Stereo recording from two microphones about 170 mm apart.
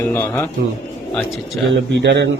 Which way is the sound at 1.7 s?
90° right.